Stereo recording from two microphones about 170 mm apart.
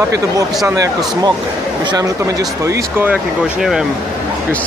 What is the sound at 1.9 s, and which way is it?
Speech, 20° right (ahead or behind).